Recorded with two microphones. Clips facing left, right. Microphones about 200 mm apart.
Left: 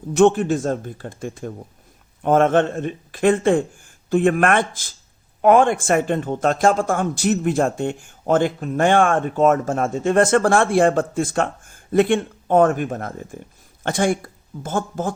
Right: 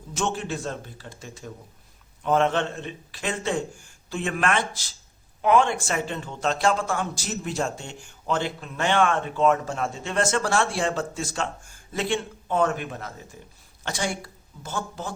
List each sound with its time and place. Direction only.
0.1 s speech: 60° left (ahead or behind)